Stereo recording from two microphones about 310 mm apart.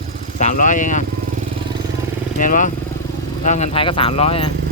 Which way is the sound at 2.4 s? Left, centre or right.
Left.